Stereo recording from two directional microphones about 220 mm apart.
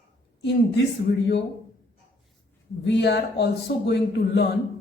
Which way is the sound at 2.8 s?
50° left (ahead or behind).